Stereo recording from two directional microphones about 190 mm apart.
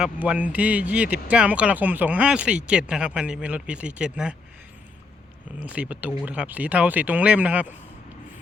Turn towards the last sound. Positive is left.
turn(degrees=-10)  # may be behind; listen again after turning